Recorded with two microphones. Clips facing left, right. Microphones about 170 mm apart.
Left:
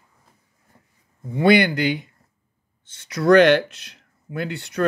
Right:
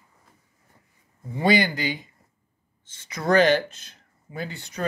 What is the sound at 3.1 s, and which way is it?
Speech, 70° left (ahead or behind).